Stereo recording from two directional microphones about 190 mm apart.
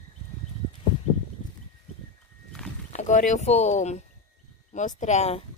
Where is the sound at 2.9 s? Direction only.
40° left (ahead or behind).